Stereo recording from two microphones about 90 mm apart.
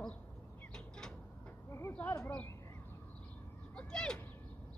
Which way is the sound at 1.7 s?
30° left (ahead or behind).